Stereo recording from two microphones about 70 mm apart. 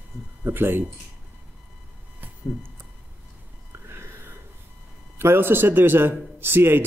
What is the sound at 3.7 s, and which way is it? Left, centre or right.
Music, right.